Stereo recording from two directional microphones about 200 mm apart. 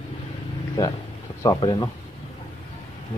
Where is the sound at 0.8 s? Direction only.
15° left (ahead or behind).